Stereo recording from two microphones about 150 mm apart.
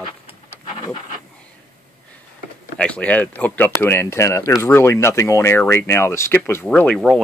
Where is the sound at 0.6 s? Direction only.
40° left (ahead or behind).